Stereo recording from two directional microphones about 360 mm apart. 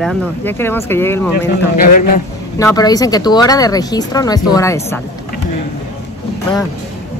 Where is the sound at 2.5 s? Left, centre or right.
Centre.